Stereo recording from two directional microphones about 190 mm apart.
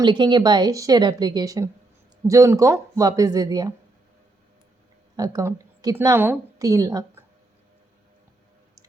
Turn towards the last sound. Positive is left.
turn(degrees=-20)  # may be behind; listen again after turning